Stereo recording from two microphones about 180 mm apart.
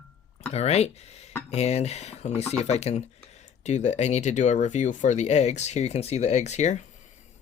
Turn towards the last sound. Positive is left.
turn(degrees=40)  # may be behind; listen again after turning